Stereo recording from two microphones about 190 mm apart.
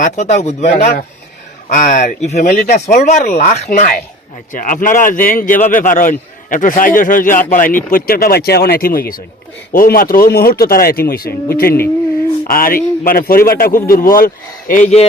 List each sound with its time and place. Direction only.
0.0 s a man's voice: 35° left (ahead or behind)